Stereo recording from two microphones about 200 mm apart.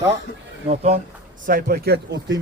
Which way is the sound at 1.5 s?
45° right (ahead or behind).